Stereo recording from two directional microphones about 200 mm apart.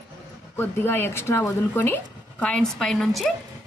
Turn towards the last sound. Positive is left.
turn(degrees=5)  # may be behind; listen again after turning